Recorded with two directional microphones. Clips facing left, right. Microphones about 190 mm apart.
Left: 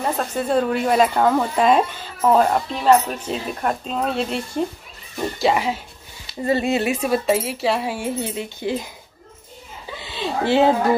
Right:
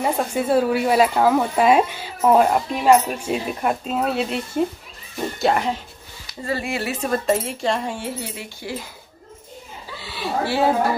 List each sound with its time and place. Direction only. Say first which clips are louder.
0.0 s speech: right 2 dB; 10° right (ahead or behind)
5.4 s cutlery: even; 5° left (ahead or behind)
6.2 s speech: left 6 dB; 20° left (ahead or behind)
7.0 s cutlery: left 1 dB; 5° left (ahead or behind)
8.2 s speech: left 6 dB; 20° left (ahead or behind)
9.9 s chuckle: even; 20° left (ahead or behind)